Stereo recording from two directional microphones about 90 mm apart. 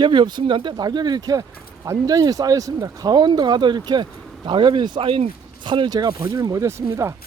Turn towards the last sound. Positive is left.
turn(degrees=-35)  # may be behind; listen again after turning